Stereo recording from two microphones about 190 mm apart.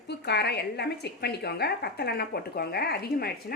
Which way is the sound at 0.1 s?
60° left (ahead or behind).